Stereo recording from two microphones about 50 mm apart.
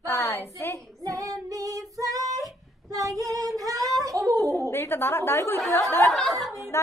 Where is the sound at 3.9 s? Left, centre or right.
Right.